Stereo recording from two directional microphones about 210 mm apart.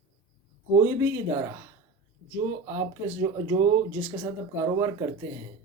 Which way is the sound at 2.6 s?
10° right (ahead or behind).